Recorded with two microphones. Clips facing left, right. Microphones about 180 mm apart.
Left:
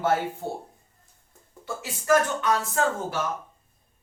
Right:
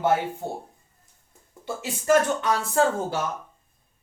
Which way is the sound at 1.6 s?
25° right (ahead or behind).